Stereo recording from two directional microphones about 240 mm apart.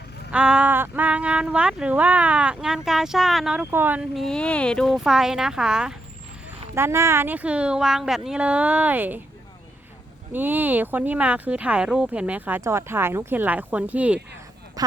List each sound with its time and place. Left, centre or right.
0.3 s speech: centre
10.3 s speech: centre